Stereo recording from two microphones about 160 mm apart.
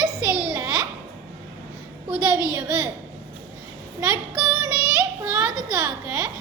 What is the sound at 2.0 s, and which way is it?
Speech, 5° right (ahead or behind).